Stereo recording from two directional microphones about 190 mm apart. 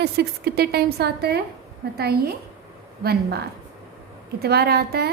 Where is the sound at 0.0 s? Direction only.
55° right (ahead or behind).